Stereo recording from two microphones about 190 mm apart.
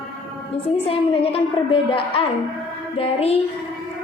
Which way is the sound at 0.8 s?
30° left (ahead or behind).